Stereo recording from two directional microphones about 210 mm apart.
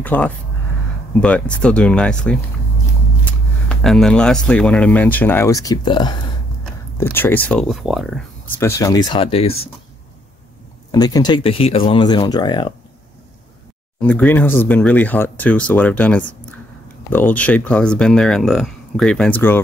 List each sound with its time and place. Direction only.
0.0 s speech: 5° left (ahead or behind)
6.6 s speech: 10° left (ahead or behind)
8.5 s speech: 15° left (ahead or behind)
10.9 s speech: 20° left (ahead or behind)
14.0 s speech: 10° left (ahead or behind)